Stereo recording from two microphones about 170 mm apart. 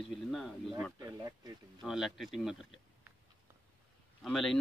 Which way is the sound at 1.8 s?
Centre (ahead or behind).